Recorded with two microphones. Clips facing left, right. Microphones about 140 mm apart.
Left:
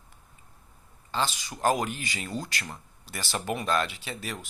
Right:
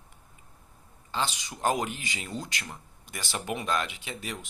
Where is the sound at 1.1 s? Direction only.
15° right (ahead or behind).